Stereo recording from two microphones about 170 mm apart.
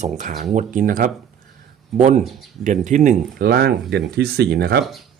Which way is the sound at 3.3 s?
70° right (ahead or behind).